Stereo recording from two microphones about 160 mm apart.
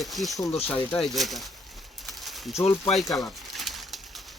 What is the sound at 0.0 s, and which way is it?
Speech, centre (ahead or behind).